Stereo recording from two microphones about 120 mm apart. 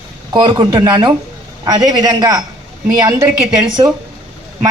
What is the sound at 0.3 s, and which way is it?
A woman's voice, 35° right (ahead or behind).